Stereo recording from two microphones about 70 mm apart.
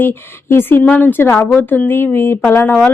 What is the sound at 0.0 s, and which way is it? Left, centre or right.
Speech, left.